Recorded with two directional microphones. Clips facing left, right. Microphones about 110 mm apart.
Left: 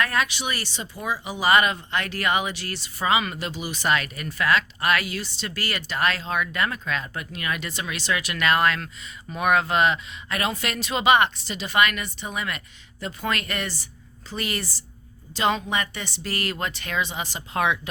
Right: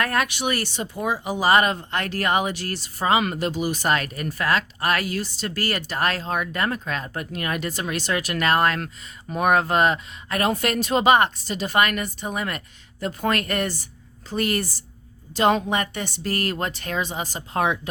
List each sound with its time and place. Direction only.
0.0 s speech: 50° right (ahead or behind)